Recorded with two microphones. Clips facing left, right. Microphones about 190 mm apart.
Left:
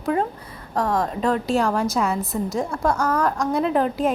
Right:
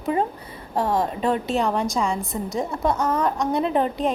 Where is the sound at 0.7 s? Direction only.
25° right (ahead or behind).